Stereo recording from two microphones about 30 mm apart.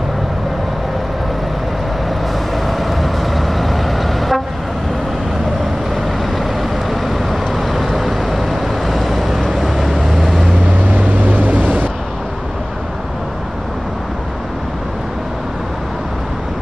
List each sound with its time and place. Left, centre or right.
2.5 s vehicle: centre
6.9 s vehicle: centre
9.9 s vehicle: centre
10.9 s vehicle: right